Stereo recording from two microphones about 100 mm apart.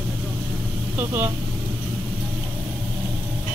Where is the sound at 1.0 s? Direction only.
25° right (ahead or behind).